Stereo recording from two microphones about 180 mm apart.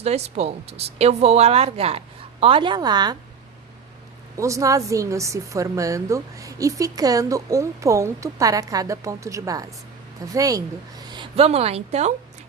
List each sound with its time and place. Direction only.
0.0 s speech: 35° right (ahead or behind)
4.4 s speech: 15° right (ahead or behind); by 12.1 s 35° right (ahead or behind)